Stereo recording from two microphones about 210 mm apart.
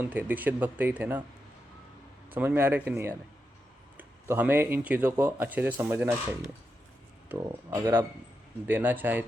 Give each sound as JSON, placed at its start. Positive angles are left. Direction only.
{"t": 0.1, "sound": "speech", "side_deg": -10}
{"t": 2.3, "sound": "speech", "side_deg": -10}
{"t": 7.3, "sound": "speech", "side_deg": -15}